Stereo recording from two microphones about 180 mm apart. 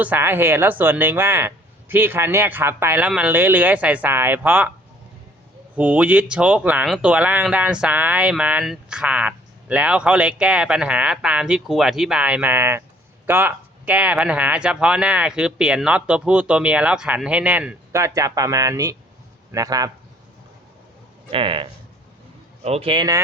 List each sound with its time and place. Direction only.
0.0 s speech: 10° right (ahead or behind)
5.7 s speech: 10° right (ahead or behind)
21.2 s speech: 30° right (ahead or behind)